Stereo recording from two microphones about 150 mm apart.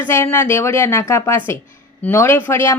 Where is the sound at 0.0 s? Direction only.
20° left (ahead or behind).